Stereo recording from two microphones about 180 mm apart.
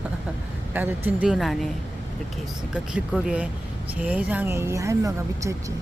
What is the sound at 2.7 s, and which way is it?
Speech, 5° right (ahead or behind).